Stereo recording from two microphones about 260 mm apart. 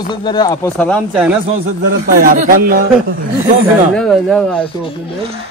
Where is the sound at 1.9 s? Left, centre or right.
Right.